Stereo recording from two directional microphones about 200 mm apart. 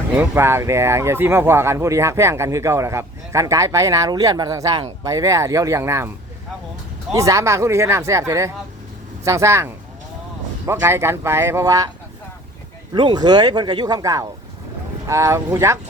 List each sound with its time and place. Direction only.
0.2 s speech: 10° right (ahead or behind)
7.1 s speech: 15° right (ahead or behind)
12.9 s speech: 25° right (ahead or behind)